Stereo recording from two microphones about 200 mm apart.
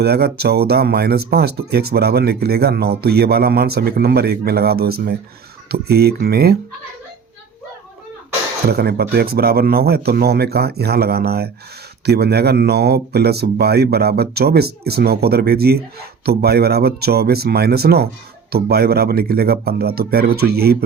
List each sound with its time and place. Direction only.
0.0 s speech: 50° right (ahead or behind)
8.6 s speech: 50° right (ahead or behind)